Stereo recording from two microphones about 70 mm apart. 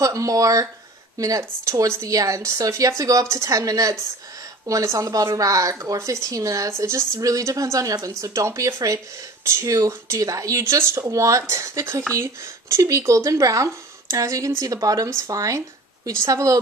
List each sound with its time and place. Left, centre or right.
0.0 s speech: right
10.6 s speech: right